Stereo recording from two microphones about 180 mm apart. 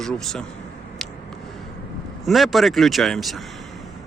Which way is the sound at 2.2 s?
Centre (ahead or behind).